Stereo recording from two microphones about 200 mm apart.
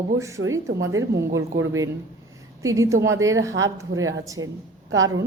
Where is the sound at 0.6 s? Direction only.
65° right (ahead or behind).